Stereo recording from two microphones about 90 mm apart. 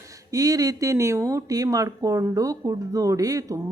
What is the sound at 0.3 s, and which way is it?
Speech, 40° right (ahead or behind).